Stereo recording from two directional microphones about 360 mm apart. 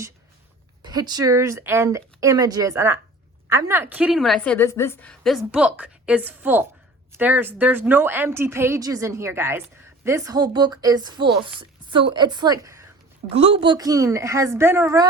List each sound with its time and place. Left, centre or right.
0.8 s a woman's voice: centre